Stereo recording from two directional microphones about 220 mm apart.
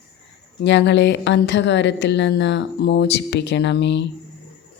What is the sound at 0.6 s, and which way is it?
A woman's voice, 50° left (ahead or behind).